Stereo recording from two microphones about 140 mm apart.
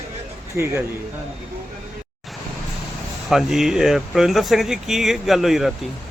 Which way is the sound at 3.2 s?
Centre (ahead or behind).